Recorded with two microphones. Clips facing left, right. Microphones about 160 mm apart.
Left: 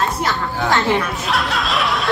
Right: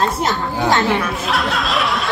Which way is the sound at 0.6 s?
20° right (ahead or behind).